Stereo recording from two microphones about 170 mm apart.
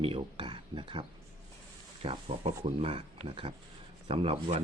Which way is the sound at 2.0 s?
35° right (ahead or behind).